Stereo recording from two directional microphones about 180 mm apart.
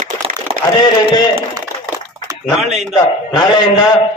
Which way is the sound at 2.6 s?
35° right (ahead or behind).